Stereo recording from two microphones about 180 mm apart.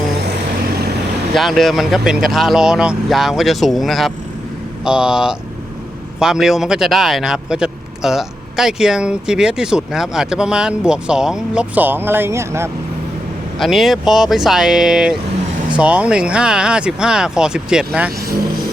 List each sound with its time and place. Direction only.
0.7 s vehicle: 60° right (ahead or behind)
1.3 s speech: centre (ahead or behind); by 12.7 s 15° right (ahead or behind)
13.6 s speech: centre (ahead or behind)